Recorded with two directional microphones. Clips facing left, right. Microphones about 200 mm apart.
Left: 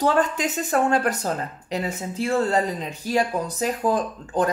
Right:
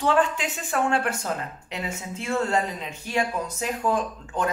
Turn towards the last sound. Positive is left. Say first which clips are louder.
# left 4 dB
turn(degrees=35)  # may be behind; listen again after turning